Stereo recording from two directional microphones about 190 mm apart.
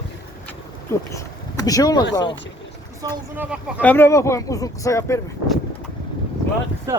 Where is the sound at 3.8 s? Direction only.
10° left (ahead or behind).